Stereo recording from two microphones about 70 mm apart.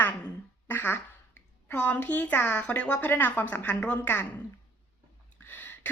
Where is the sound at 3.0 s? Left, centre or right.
Left.